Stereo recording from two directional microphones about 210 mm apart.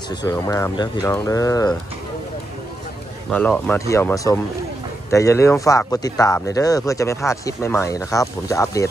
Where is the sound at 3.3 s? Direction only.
5° left (ahead or behind).